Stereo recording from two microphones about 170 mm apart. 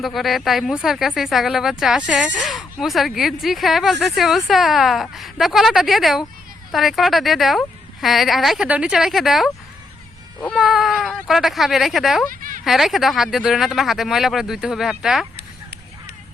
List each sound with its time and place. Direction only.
0.0 s speech: centre (ahead or behind)
12.3 s a sound: 55° right (ahead or behind)
12.6 s speech: centre (ahead or behind)